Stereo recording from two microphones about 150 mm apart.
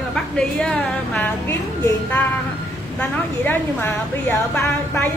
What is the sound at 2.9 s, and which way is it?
A woman's voice, 15° left (ahead or behind).